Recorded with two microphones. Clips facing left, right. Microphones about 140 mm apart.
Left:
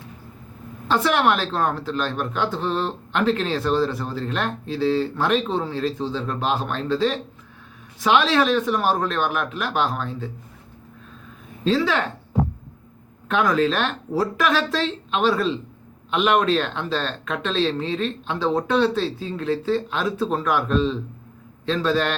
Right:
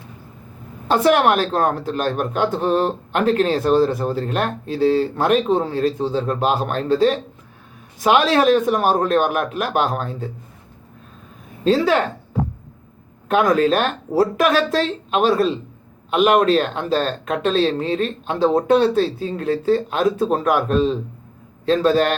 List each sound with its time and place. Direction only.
1.0 s speech: 45° right (ahead or behind)
11.6 s speech: 45° right (ahead or behind)
13.2 s speech: 45° right (ahead or behind)